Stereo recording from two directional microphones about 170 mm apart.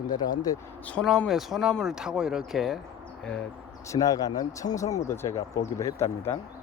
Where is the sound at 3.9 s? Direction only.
20° left (ahead or behind).